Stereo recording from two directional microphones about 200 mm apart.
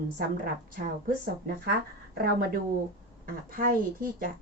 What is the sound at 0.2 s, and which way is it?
Speech, 45° right (ahead or behind).